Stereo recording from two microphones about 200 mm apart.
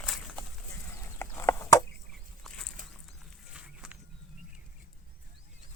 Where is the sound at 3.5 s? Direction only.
5° right (ahead or behind).